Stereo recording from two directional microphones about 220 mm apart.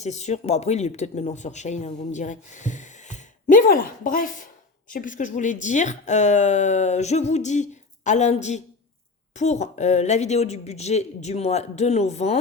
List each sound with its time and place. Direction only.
0.0 s a man's voice: 30° left (ahead or behind)